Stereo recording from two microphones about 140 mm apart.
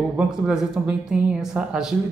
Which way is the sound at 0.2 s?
5° right (ahead or behind).